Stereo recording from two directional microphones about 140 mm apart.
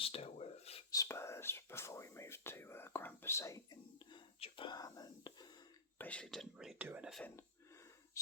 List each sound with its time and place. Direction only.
0.0 s a sound: 45° left (ahead or behind)
0.9 s whispering: 20° left (ahead or behind)
4.4 s whispering: 40° left (ahead or behind)
6.0 s speech: 10° left (ahead or behind); by 7.1 s 10° right (ahead or behind)
7.1 s speech: 5° left (ahead or behind)
8.1 s whispering: 25° left (ahead or behind)